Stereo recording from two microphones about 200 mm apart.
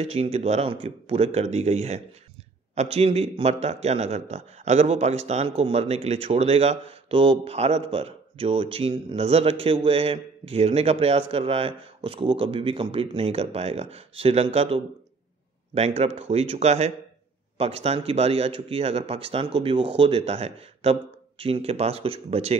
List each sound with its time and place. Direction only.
0.0 s a man's voice: 30° right (ahead or behind)